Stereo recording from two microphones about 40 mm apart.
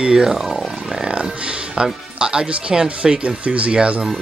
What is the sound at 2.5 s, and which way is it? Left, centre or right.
Speech, right.